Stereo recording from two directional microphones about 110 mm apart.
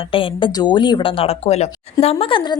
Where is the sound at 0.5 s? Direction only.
45° left (ahead or behind).